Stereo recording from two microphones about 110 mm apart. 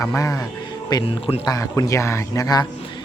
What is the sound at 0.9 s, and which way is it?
Speech, 40° left (ahead or behind).